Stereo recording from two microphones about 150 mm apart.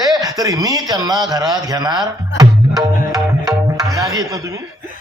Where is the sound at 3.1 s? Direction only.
25° right (ahead or behind).